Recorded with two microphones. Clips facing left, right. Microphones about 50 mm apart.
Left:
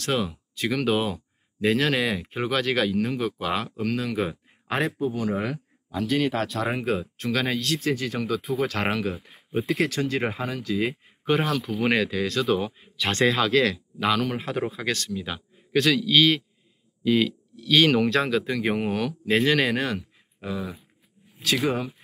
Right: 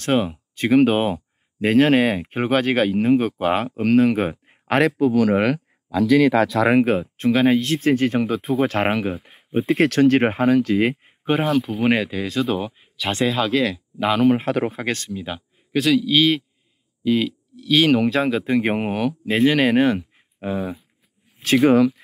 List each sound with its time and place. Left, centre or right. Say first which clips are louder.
0.0 s speech: right 6 dB; right
4.6 s speech: right 8 dB; right
6.7 s speech: right 9 dB; right
7.2 s speech: right 9 dB; right
9.8 s speech: right 13 dB; right
11.3 s speech: right 5 dB; centre
14.5 s speech: right 5 dB; right
15.0 s speech: right 2 dB; centre
18.4 s speech: right 5 dB; right
18.9 s speech: right 3 dB; centre; by 20.5 s right
21.7 s speech: right 14 dB; right